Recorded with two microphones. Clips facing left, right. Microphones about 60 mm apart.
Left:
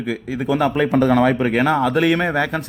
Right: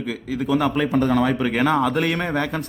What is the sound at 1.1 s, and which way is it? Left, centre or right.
Speech, left.